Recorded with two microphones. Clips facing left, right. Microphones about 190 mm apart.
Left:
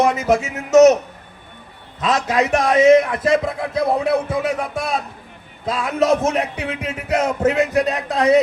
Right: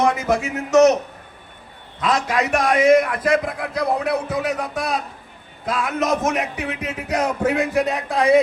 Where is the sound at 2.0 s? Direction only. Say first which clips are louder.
Left 2 dB; 20° left (ahead or behind).